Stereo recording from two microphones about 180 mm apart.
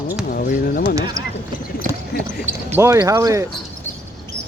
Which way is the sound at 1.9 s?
15° right (ahead or behind).